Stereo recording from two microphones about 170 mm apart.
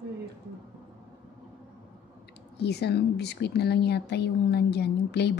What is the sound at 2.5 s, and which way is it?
A woman's voice, 75° left (ahead or behind).